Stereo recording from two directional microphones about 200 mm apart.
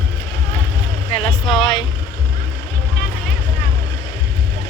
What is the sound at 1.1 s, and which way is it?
Speech, 25° left (ahead or behind).